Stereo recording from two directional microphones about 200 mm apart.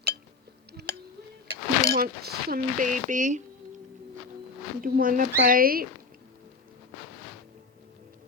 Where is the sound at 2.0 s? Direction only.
45° right (ahead or behind).